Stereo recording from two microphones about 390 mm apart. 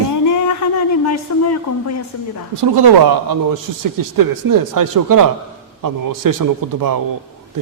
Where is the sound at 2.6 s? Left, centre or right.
Right.